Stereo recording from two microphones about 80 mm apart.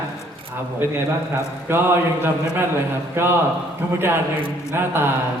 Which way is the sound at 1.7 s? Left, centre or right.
Right.